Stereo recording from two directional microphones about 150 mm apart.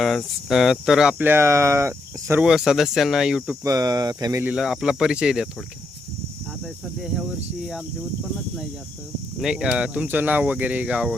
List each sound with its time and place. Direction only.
0.0 s speech: centre (ahead or behind); by 2.4 s 20° right (ahead or behind)
2.4 s speech: 5° right (ahead or behind)
3.6 s speech: 25° right (ahead or behind)
4.5 s speech: 5° right (ahead or behind)
6.6 s speech: 5° right (ahead or behind)
9.4 s speech: 5° right (ahead or behind)